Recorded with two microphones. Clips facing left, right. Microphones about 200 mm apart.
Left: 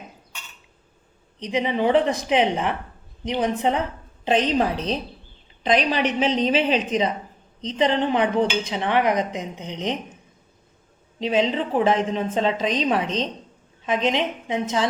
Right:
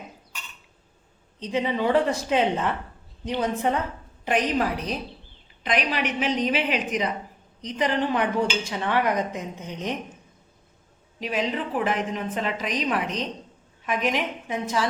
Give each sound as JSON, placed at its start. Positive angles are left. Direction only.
{"t": 1.4, "sound": "a woman's voice", "side_deg": 15}
{"t": 11.2, "sound": "a woman's voice", "side_deg": 25}